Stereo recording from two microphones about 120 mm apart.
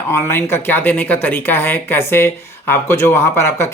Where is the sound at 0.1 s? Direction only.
20° left (ahead or behind).